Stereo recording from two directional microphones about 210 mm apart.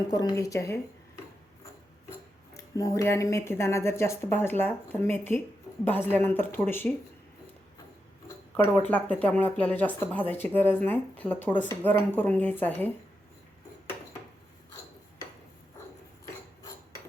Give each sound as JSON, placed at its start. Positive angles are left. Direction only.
{"t": 0.1, "sound": "speech", "side_deg": 20}
{"t": 2.6, "sound": "speech", "side_deg": 15}
{"t": 8.8, "sound": "speech", "side_deg": 10}